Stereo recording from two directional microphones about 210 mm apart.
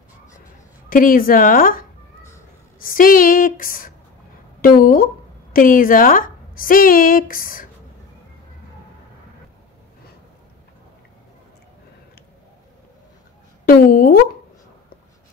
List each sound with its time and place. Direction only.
0.8 s a woman's voice: 40° left (ahead or behind)
13.7 s speech: 45° left (ahead or behind)